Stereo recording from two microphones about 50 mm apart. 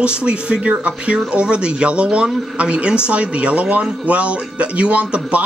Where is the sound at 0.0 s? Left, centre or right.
Right.